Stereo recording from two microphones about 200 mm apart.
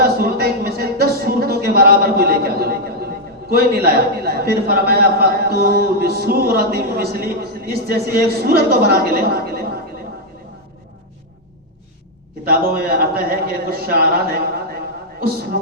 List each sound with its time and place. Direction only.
0.0 s a sound: 50° right (ahead or behind)
3.8 s a man's voice: 50° right (ahead or behind)
12.5 s a man's voice: 50° right (ahead or behind)